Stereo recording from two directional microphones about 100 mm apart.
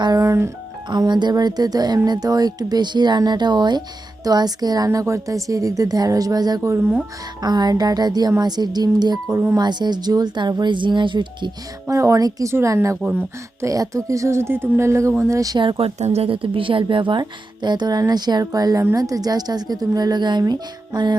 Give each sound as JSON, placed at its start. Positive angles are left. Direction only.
{"t": 0.0, "sound": "music", "side_deg": -35}
{"t": 0.9, "sound": "speech", "side_deg": -45}
{"t": 6.6, "sound": "speech", "side_deg": -25}
{"t": 7.4, "sound": "speech", "side_deg": -45}
{"t": 11.9, "sound": "speech", "side_deg": -35}
{"t": 15.5, "sound": "speech", "side_deg": -65}